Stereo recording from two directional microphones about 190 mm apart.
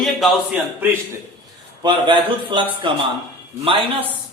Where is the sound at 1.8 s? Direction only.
25° right (ahead or behind).